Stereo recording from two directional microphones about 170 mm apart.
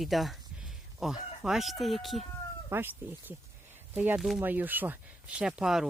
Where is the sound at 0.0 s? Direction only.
Centre (ahead or behind).